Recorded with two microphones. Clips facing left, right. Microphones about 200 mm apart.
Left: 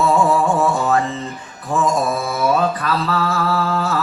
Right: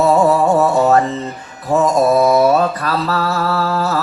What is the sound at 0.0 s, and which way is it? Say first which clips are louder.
Music: right 4 dB; 40° right (ahead or behind).